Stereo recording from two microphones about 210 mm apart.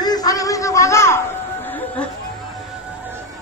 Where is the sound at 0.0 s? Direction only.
20° left (ahead or behind).